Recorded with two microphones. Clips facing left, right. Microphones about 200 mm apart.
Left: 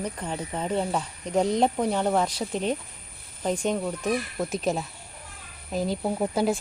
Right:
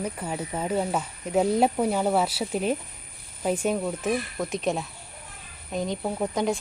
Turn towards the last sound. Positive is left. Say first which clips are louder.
# left 1 dB
turn(degrees=5)  # may be behind; listen again after turning